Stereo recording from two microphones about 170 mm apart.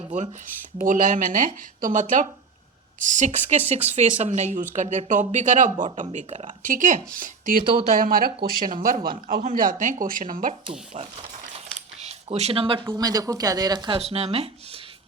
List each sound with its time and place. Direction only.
0.8 s speech: 50° right (ahead or behind)
10.7 s speech: 35° right (ahead or behind)